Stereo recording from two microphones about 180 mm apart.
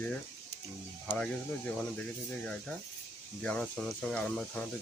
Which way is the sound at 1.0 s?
5° left (ahead or behind).